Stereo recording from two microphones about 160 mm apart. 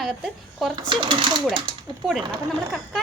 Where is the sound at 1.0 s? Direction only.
30° right (ahead or behind).